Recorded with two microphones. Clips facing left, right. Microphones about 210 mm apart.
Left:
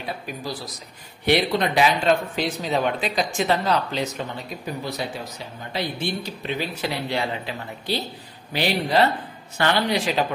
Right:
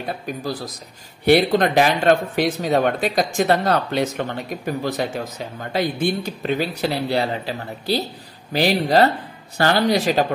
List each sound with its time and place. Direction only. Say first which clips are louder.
0.0 s speech: right 4 dB; 60° right (ahead or behind)
1.3 s speech: right 5 dB; 45° right (ahead or behind)